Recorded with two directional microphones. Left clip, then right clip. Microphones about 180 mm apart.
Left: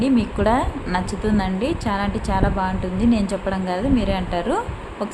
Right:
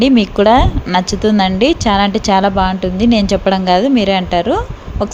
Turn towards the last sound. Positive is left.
turn(degrees=-30)  # may be behind; listen again after turning